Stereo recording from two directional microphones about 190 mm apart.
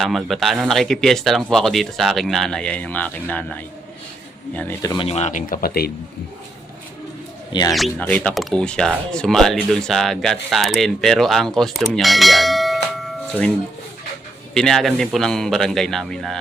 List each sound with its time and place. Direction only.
0.0 s speech: centre (ahead or behind); by 5.9 s 50° left (ahead or behind)
7.7 s speech: centre (ahead or behind)
14.5 s speech: 5° left (ahead or behind)